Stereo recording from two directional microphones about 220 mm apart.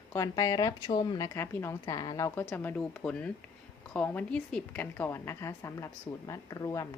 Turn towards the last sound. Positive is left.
turn(degrees=15)  # may be behind; listen again after turning